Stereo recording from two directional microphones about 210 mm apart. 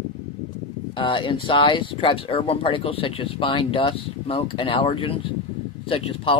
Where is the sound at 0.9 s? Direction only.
25° left (ahead or behind).